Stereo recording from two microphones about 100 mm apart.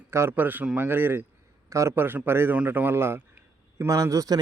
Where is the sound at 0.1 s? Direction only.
25° right (ahead or behind).